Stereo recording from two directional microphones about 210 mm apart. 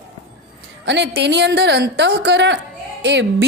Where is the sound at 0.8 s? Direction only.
55° right (ahead or behind).